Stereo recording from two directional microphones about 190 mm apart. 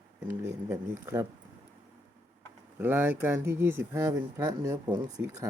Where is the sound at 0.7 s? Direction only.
15° right (ahead or behind).